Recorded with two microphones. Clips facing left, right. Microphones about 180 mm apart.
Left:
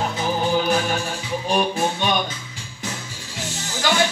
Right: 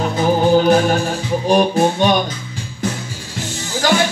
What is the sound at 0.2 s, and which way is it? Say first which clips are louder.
Organ: right 9 dB; 45° right (ahead or behind).